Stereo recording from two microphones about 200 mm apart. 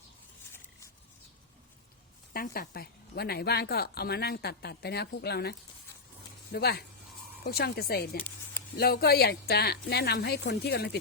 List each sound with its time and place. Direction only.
2.3 s a woman's voice: 45° left (ahead or behind)